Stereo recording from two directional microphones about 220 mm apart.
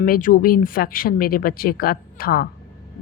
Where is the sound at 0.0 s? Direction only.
40° left (ahead or behind).